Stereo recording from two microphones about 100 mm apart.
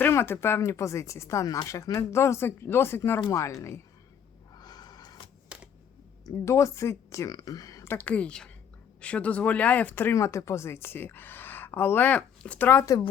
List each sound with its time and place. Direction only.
0.0 s speech: 25° left (ahead or behind)
4.5 s snort: 45° left (ahead or behind)
6.2 s speech: 30° left (ahead or behind)
7.9 s a woman's voice: 15° left (ahead or behind)